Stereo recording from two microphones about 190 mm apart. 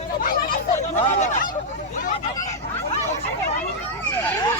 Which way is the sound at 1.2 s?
45° left (ahead or behind).